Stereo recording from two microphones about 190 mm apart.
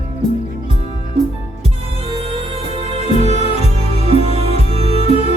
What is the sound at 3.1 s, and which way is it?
Music, 35° left (ahead or behind).